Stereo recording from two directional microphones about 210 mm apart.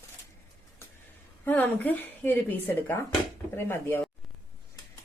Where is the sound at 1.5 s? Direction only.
10° left (ahead or behind).